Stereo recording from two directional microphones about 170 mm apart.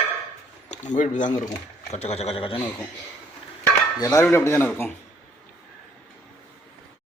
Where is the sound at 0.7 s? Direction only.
45° left (ahead or behind).